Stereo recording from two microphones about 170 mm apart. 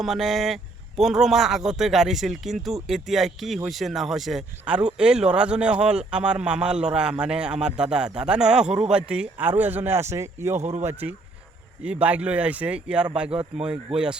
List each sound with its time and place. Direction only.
0.0 s speech: centre (ahead or behind)
10.6 s speech: 40° right (ahead or behind)
11.9 s speech: 10° right (ahead or behind)